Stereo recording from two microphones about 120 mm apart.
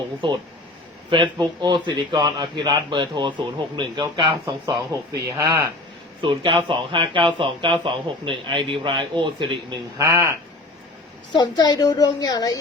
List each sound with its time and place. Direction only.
0.2 s a man's voice: 45° right (ahead or behind)
6.2 s a man's voice: 45° right (ahead or behind)
10.0 s speech: 25° right (ahead or behind)
11.3 s a woman's voice: 35° left (ahead or behind)